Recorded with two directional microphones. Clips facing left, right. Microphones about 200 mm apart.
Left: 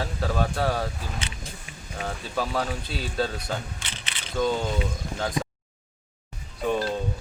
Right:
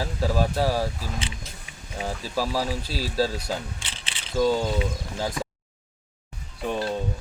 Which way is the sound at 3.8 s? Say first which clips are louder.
Left 1 dB; 30° right (ahead or behind).